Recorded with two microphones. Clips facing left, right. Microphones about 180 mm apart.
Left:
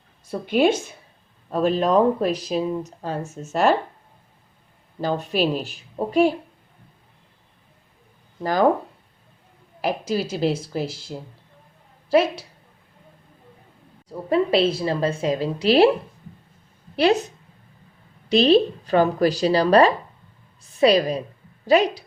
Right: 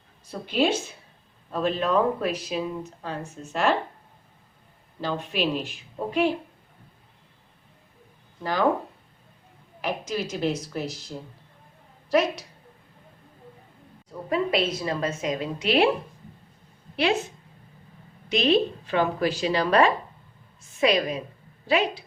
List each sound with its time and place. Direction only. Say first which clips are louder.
0.3 s speech: left 5 dB; 50° left (ahead or behind)
4.9 s speech: left 5 dB; 45° left (ahead or behind)
9.8 s speech: left 5 dB; 35° left (ahead or behind)
12.1 s a woman's voice: left 4 dB; 30° left (ahead or behind)
14.1 s speech: left 5 dB; 30° left (ahead or behind)
17.0 s speech: left 6 dB; 40° left (ahead or behind)
18.3 s speech: left 6 dB; 35° left (ahead or behind)